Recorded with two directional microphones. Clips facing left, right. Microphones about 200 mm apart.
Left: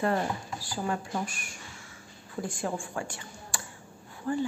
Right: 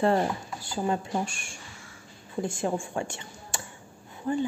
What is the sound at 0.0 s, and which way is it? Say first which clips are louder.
A woman's voice: right 4 dB; 25° right (ahead or behind).